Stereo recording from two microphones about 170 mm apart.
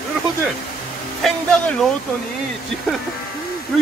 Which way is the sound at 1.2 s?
Centre (ahead or behind).